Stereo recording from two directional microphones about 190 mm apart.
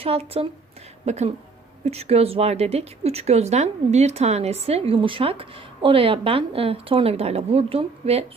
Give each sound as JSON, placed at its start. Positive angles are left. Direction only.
{"t": 0.0, "sound": "a woman's voice", "side_deg": -30}